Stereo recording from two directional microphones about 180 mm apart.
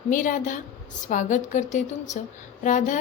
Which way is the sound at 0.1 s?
45° left (ahead or behind).